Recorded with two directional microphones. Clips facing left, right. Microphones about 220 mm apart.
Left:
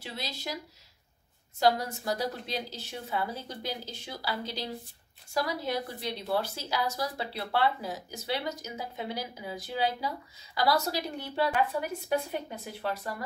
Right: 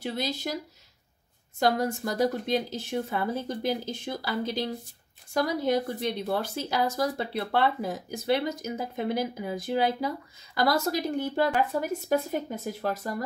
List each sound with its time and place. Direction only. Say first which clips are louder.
0.0 s speech: right 8 dB; 50° right (ahead or behind)
1.6 s speech: right 2 dB; 50° right (ahead or behind)